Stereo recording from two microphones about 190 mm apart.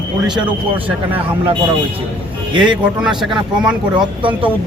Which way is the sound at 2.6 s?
5° right (ahead or behind).